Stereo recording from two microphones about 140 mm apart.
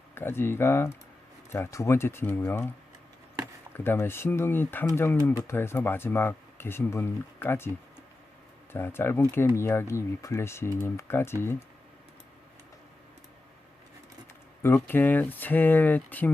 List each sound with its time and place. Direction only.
0.1 s speech: 15° left (ahead or behind)
3.8 s speech: 15° left (ahead or behind)
8.7 s speech: 15° left (ahead or behind)
14.6 s speech: 15° left (ahead or behind)